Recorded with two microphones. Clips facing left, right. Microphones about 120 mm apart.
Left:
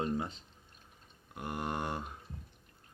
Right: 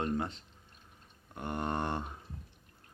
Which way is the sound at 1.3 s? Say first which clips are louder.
Right 2 dB; 10° left (ahead or behind).